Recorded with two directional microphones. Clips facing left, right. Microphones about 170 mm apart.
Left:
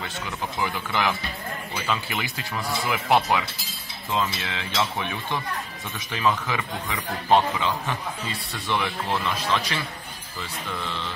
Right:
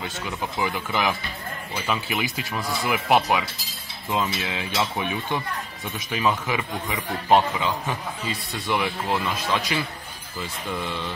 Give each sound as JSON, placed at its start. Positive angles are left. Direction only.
{"t": 0.6, "sound": "a man's voice", "side_deg": -15}